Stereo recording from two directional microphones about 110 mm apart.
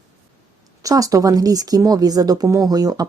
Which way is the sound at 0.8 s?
30° right (ahead or behind).